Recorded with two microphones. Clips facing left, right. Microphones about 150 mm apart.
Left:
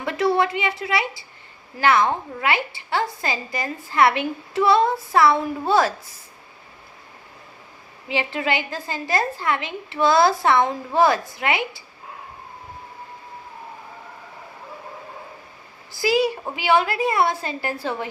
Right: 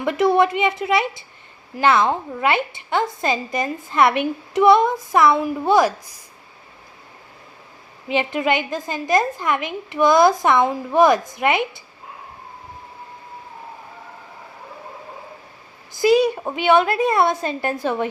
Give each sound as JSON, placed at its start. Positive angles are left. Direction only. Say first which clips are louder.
{"t": 0.0, "sound": "a woman's voice", "louder": "right 4 dB", "side_deg": -20}
{"t": 8.1, "sound": "a woman's voice", "louder": "right 4 dB", "side_deg": -20}
{"t": 15.9, "sound": "a woman's voice", "louder": "right 5 dB", "side_deg": -20}